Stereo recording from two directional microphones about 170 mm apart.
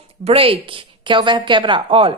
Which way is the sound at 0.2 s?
35° right (ahead or behind).